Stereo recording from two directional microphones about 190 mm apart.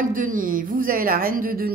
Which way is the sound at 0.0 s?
45° right (ahead or behind).